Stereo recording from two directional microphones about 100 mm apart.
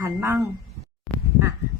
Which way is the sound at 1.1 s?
Centre (ahead or behind).